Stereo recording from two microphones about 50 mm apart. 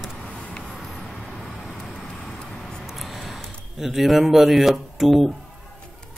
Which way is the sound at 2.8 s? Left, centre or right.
Centre.